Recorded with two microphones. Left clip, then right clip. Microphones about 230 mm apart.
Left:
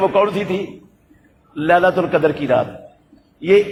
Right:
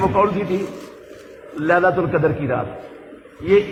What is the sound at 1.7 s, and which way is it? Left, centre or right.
Speech, left.